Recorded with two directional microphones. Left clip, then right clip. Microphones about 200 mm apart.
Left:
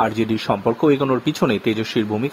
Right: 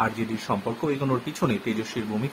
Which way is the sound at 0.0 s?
45° left (ahead or behind).